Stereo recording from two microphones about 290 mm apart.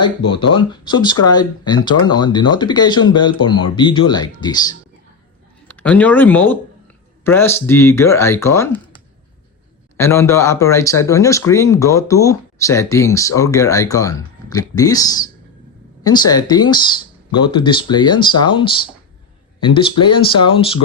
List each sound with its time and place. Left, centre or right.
0.5 s speech: centre
10.0 s speech: centre